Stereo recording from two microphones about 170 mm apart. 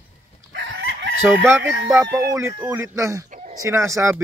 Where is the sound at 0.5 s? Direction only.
90° right.